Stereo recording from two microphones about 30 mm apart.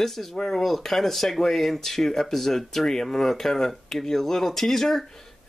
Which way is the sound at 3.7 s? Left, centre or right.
Centre.